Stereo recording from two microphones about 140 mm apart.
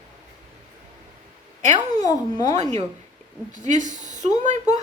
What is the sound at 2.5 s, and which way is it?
A woman's voice, 55° right (ahead or behind).